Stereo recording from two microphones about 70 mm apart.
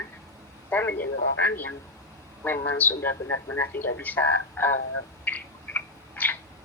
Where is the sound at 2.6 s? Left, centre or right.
Left.